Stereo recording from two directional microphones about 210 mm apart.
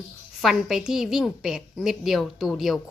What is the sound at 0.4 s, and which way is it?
Speech, centre (ahead or behind).